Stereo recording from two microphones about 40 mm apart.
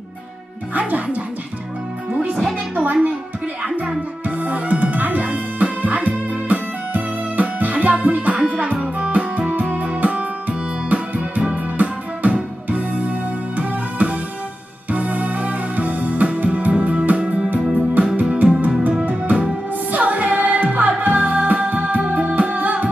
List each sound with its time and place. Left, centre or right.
0.7 s music: right
2.7 s music: right
4.4 s music: right
9.5 s music: right
13.6 s music: right
17.5 s music: right